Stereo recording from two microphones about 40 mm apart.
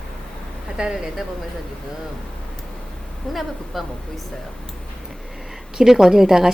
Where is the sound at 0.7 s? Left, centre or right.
Centre.